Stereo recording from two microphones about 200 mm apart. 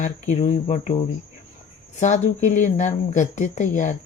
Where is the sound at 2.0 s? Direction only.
35° left (ahead or behind).